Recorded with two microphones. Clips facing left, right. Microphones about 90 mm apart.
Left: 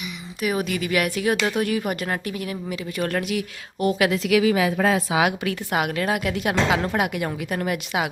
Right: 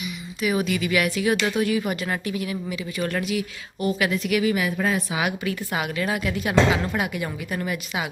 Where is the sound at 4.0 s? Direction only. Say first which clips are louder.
Left 4 dB; 90° left; by 8.1 s 70° left (ahead or behind).